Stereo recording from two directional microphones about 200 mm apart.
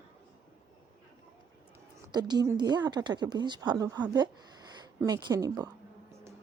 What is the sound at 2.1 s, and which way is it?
A woman's voice, 20° right (ahead or behind).